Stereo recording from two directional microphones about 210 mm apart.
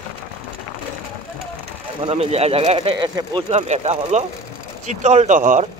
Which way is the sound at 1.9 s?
30° right (ahead or behind).